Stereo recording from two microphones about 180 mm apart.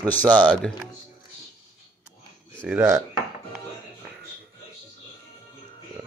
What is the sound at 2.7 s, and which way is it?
Speech, 15° right (ahead or behind).